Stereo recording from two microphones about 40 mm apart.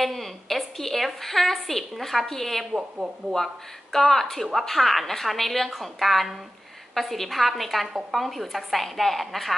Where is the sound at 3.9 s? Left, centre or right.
Centre.